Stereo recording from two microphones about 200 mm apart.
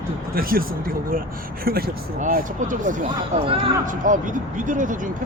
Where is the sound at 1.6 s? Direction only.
50° right (ahead or behind).